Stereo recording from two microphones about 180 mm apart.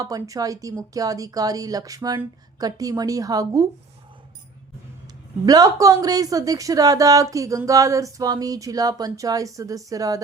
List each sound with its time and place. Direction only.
0.0 s speech: 20° right (ahead or behind)
5.5 s speech: 20° right (ahead or behind)